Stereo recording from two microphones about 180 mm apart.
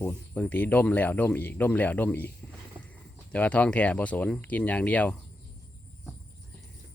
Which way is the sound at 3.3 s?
10° left (ahead or behind).